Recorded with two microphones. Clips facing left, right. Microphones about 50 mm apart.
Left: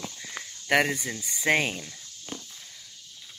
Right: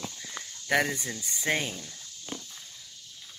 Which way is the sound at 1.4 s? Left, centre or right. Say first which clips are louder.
Left 5 dB; left.